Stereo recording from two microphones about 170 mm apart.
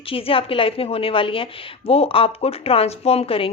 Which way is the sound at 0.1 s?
35° left (ahead or behind).